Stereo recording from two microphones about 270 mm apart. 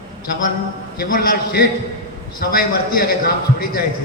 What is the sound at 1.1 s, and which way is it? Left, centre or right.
A man's voice, left.